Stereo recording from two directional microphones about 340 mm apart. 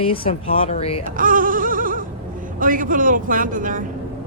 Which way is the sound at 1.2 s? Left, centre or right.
Right.